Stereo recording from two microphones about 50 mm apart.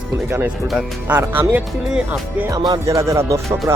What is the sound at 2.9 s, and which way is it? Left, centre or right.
Music, right.